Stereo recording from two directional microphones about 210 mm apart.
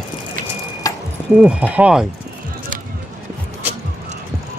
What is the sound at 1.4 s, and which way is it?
Speech, 5° right (ahead or behind).